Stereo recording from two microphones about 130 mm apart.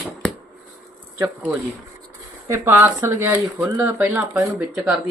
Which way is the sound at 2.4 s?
20° right (ahead or behind).